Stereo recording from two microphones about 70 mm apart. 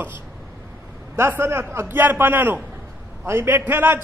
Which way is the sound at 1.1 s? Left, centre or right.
Right.